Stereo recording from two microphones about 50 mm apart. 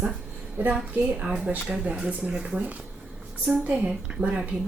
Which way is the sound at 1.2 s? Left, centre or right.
Centre.